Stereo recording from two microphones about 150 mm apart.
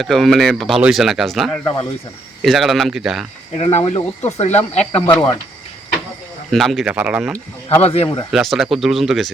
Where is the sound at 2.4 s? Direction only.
Centre (ahead or behind).